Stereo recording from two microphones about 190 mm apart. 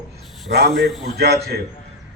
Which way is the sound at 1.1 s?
55° right (ahead or behind).